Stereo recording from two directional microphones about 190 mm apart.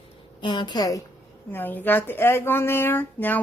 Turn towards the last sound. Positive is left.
turn(degrees=10)  # may be behind; listen again after turning